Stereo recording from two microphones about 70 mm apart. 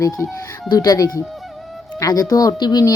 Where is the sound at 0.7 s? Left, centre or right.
Left.